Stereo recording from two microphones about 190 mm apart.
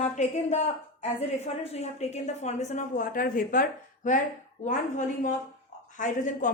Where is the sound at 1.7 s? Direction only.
35° left (ahead or behind).